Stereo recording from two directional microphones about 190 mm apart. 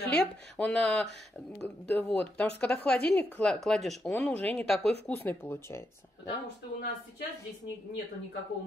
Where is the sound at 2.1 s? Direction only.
5° left (ahead or behind).